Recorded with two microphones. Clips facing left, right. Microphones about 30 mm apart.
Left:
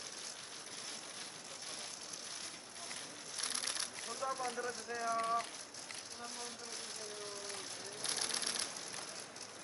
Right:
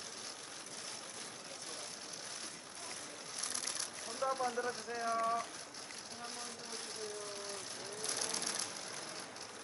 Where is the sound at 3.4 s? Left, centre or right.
Left.